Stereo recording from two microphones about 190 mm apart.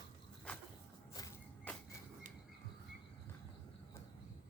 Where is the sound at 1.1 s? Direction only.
15° left (ahead or behind).